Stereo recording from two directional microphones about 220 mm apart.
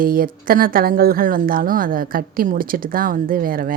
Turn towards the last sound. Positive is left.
turn(degrees=-40)  # may be behind; listen again after turning